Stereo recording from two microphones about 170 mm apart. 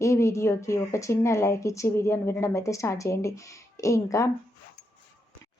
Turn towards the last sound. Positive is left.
turn(degrees=20)  # may be behind; listen again after turning